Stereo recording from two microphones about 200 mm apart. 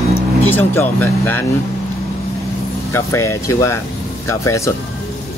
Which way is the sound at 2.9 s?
15° left (ahead or behind).